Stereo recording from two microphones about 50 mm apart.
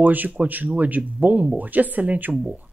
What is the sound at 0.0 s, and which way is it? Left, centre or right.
Speech, right.